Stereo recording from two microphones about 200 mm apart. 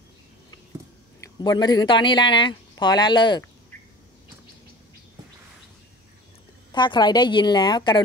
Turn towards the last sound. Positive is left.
turn(degrees=20)  # may be behind; listen again after turning